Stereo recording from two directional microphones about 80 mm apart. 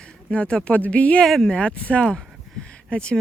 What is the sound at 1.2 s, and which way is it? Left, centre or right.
Speech, centre.